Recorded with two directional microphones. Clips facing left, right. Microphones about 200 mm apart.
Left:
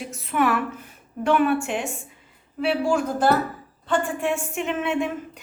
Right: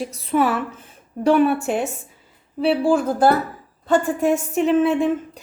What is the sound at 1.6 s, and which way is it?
Speech, 40° right (ahead or behind).